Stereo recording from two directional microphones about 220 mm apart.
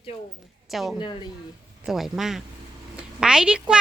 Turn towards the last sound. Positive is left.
turn(degrees=-5)  # may be behind; listen again after turning